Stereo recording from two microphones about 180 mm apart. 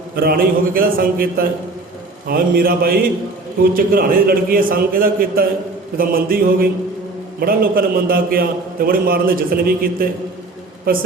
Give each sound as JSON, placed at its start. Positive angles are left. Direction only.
{"t": 0.2, "sound": "a man's voice", "side_deg": -55}